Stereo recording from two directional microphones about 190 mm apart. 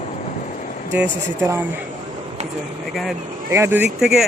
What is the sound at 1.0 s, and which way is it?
Speech, 15° right (ahead or behind).